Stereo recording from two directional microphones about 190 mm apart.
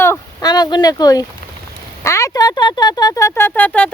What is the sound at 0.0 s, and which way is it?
Speech, 15° left (ahead or behind).